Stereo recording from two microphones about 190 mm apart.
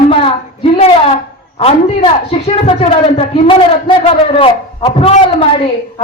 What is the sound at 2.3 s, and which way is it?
A woman's voice, 30° left (ahead or behind).